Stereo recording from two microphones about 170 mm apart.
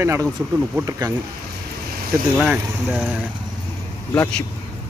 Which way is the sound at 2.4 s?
5° right (ahead or behind).